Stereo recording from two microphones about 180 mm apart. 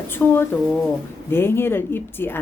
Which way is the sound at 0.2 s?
5° left (ahead or behind).